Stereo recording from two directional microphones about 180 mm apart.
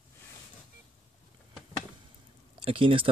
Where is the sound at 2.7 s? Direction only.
30° right (ahead or behind).